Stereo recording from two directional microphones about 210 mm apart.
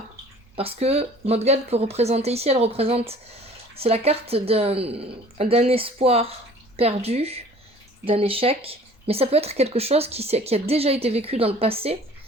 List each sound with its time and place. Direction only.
0.5 s speech: 30° right (ahead or behind)